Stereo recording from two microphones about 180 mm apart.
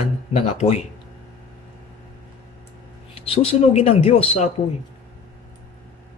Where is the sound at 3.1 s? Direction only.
30° left (ahead or behind).